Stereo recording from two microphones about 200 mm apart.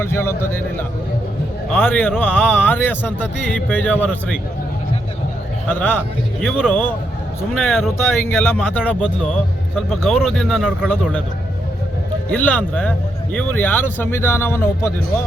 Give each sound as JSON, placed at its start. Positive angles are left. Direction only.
{"t": 0.0, "sound": "speech", "side_deg": 15}
{"t": 1.7, "sound": "speech", "side_deg": 10}
{"t": 5.6, "sound": "speech", "side_deg": 10}
{"t": 9.0, "sound": "speech", "side_deg": -5}
{"t": 12.3, "sound": "speech", "side_deg": 10}